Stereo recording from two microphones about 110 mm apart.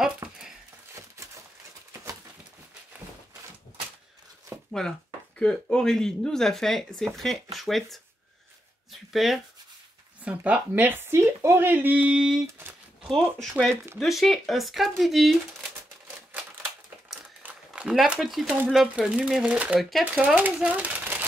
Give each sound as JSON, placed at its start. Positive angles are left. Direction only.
{"t": 4.5, "sound": "a sound", "side_deg": -25}
{"t": 5.4, "sound": "speech", "side_deg": 10}
{"t": 9.1, "sound": "speech", "side_deg": 0}
{"t": 10.2, "sound": "speech", "side_deg": -10}
{"t": 17.4, "sound": "a sound", "side_deg": -15}
{"t": 17.8, "sound": "speech", "side_deg": -5}
{"t": 19.8, "sound": "speech", "side_deg": 0}
{"t": 20.1, "sound": "speech", "side_deg": -10}
{"t": 20.6, "sound": "a sound", "side_deg": -15}